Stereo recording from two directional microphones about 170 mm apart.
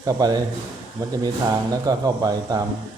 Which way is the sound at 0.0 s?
20° right (ahead or behind).